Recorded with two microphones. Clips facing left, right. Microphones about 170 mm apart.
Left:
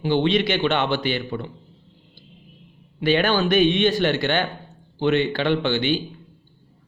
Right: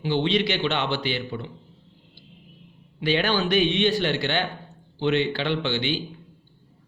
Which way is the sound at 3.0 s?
50° left (ahead or behind).